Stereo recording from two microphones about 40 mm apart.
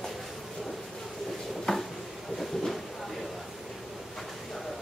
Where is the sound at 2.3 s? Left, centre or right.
Centre.